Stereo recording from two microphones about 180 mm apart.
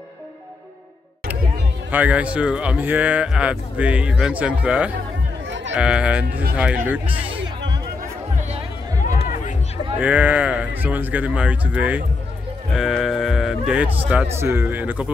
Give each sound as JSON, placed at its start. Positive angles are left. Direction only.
{"t": 1.9, "sound": "speech", "side_deg": -10}
{"t": 5.5, "sound": "music", "side_deg": -85}
{"t": 5.8, "sound": "speech", "side_deg": -5}
{"t": 7.1, "sound": "speech", "side_deg": -30}
{"t": 8.0, "sound": "music", "side_deg": -40}
{"t": 9.9, "sound": "speech", "side_deg": -10}